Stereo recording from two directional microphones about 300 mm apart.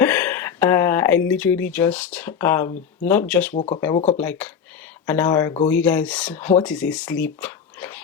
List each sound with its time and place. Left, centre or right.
0.0 s speech: centre
3.5 s speech: left
4.2 s speech: centre